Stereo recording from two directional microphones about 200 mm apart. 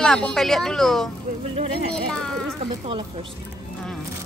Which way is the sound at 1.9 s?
5° left (ahead or behind).